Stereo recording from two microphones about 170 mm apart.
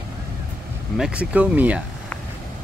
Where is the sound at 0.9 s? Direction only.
5° right (ahead or behind).